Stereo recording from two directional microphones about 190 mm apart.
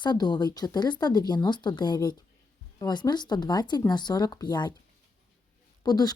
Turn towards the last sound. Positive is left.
turn(degrees=20)  # may be behind; listen again after turning